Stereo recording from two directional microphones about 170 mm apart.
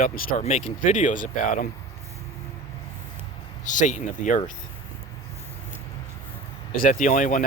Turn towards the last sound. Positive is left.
turn(degrees=50)  # may be behind; listen again after turning